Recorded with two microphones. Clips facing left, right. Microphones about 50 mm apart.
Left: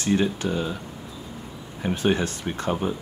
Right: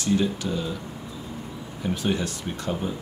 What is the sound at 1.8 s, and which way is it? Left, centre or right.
Speech, left.